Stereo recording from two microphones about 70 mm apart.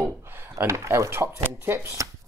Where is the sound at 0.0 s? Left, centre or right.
Right.